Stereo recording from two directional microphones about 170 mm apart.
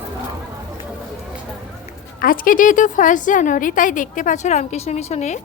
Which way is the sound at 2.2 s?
55° left (ahead or behind).